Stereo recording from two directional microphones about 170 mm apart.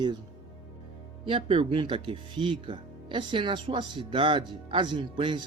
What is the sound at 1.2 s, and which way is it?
Speech, 30° right (ahead or behind).